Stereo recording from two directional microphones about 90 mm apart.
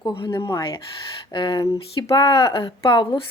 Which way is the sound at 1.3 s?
60° left (ahead or behind).